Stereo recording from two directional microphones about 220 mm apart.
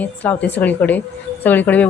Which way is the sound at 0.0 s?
5° left (ahead or behind).